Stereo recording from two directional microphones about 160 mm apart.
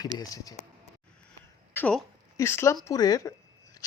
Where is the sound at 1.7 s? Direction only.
10° left (ahead or behind).